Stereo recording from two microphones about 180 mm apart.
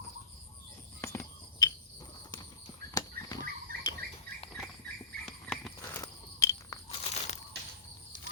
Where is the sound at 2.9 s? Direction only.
20° left (ahead or behind).